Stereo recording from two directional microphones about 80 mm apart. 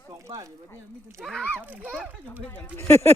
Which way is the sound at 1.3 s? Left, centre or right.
Centre.